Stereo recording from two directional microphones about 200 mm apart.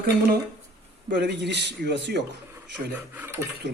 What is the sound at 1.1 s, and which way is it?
Speech, 60° right (ahead or behind).